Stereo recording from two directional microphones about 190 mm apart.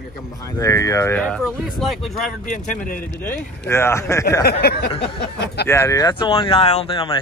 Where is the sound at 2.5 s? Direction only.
45° left (ahead or behind).